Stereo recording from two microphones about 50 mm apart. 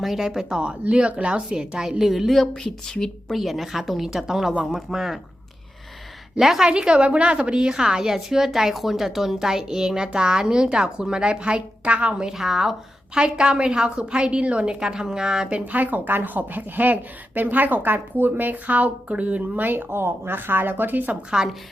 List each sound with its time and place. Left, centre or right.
0.0 s a woman's voice: centre
0.6 s speech: centre
1.5 s a woman's voice: centre
2.4 s a woman's voice: centre
3.3 s a woman's voice: centre
6.3 s a woman's voice: centre
12.4 s a woman's voice: centre
13.1 s a woman's voice: centre
15.5 s speech: right
21.2 s a woman's voice: centre